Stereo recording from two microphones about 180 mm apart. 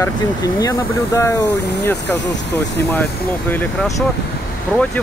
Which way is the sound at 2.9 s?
10° left (ahead or behind).